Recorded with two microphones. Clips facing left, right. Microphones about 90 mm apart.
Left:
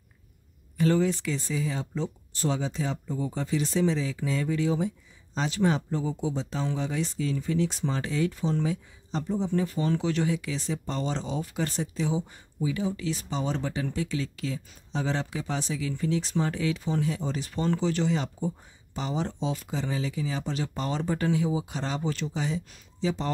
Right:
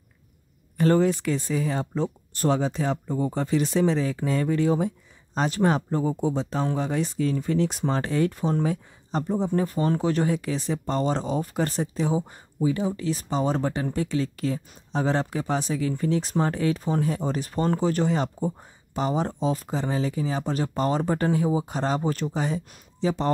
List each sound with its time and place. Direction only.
0.7 s speech: 50° right (ahead or behind)